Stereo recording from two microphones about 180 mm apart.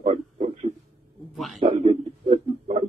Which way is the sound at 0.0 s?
35° right (ahead or behind).